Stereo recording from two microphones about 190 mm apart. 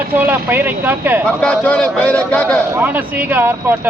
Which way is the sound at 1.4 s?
5° left (ahead or behind).